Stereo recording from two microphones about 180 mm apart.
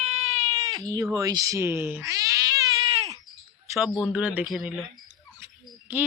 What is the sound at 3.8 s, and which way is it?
A man's voice, 5° right (ahead or behind).